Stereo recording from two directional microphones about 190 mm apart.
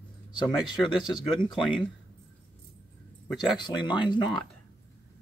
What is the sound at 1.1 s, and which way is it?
Speech, 25° left (ahead or behind).